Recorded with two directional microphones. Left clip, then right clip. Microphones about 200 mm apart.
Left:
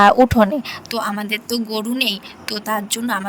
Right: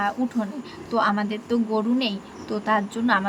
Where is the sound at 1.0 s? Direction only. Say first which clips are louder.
Right 1 dB; centre (ahead or behind).